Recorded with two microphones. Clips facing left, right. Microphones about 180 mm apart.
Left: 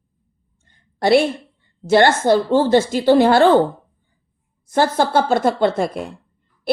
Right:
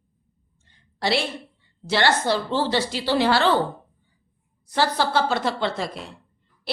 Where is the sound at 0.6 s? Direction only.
50° left (ahead or behind).